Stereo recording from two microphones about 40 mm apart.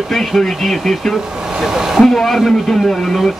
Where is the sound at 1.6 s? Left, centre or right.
Centre.